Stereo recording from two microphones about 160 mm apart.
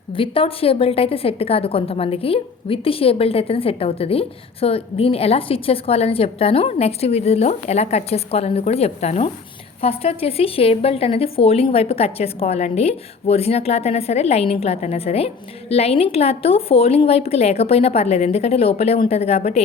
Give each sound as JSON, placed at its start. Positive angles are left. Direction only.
{"t": 0.1, "sound": "a woman's voice", "side_deg": 35}